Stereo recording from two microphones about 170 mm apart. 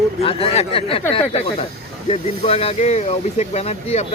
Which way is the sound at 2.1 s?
35° left (ahead or behind).